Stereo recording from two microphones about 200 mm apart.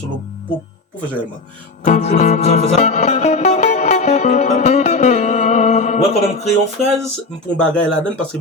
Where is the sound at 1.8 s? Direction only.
35° left (ahead or behind).